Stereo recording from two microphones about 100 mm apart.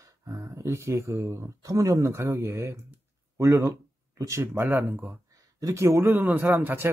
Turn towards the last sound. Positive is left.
turn(degrees=-20)  # may be behind; listen again after turning